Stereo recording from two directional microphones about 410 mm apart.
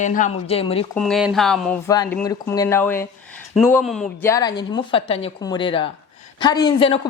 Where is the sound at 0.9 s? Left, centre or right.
Centre.